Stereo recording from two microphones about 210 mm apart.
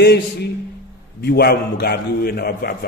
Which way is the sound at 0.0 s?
50° left (ahead or behind).